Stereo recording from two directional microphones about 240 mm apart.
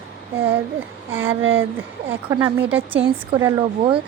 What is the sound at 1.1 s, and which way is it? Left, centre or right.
A woman's voice, centre.